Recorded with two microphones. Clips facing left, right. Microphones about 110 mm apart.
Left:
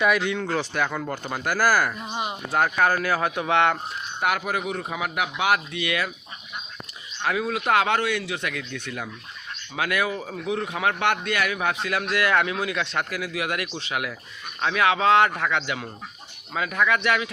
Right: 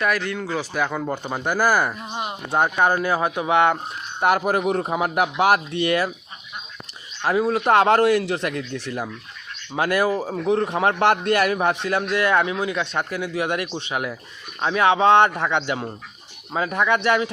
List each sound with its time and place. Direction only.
0.0 s speech: centre (ahead or behind); by 2.0 s 20° right (ahead or behind)
2.0 s speech: centre (ahead or behind)
2.5 s speech: 20° right (ahead or behind)
4.2 s a man's voice: 35° right (ahead or behind)
7.3 s a man's voice: 30° right (ahead or behind)